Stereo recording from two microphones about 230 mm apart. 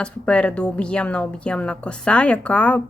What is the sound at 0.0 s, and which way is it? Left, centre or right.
A woman's voice, centre.